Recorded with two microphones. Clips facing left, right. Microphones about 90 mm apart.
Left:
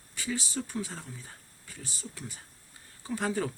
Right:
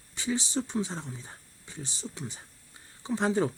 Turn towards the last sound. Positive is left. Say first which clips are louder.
# right 4 dB
turn(degrees=-25)  # may be behind; listen again after turning